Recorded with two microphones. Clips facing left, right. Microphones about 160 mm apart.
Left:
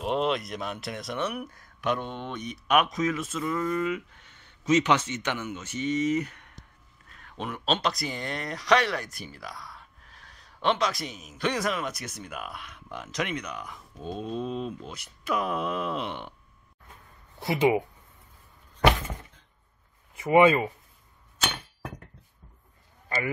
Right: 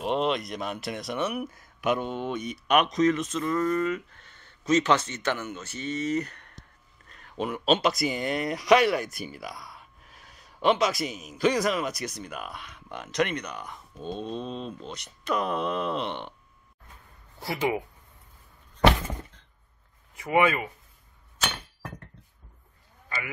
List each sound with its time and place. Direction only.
0.0 s speech: centre (ahead or behind)
7.1 s speech: centre (ahead or behind)
17.4 s speech: 25° left (ahead or behind)
20.2 s speech: 20° left (ahead or behind)
23.0 s sheep: 35° left (ahead or behind)